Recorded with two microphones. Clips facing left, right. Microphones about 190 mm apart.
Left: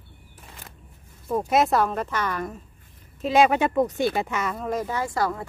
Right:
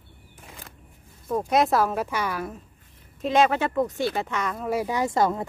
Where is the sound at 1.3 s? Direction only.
Centre (ahead or behind).